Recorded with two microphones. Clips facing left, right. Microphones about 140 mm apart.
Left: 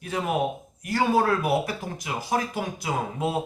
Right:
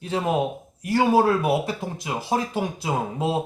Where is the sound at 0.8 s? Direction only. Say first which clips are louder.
Right 4 dB; 25° right (ahead or behind).